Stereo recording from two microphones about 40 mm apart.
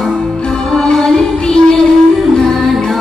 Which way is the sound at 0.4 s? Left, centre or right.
Centre.